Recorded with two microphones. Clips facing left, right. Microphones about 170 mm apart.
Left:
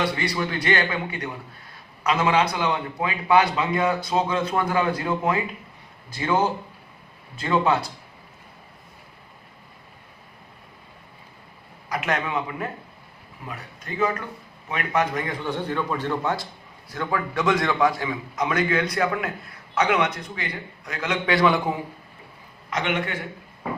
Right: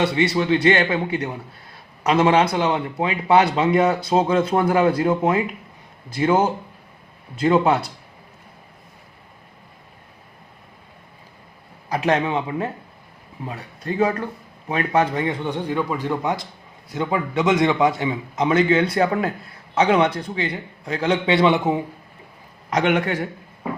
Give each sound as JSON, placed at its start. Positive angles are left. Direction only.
{"t": 0.0, "sound": "a man's voice", "side_deg": -25}
{"t": 11.9, "sound": "a man's voice", "side_deg": -30}
{"t": 22.7, "sound": "a man's voice", "side_deg": -45}